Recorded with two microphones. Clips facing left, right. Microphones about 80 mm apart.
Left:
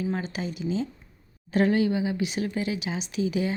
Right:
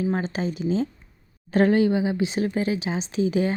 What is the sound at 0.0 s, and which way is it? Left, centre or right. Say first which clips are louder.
Speech: right 5 dB; right.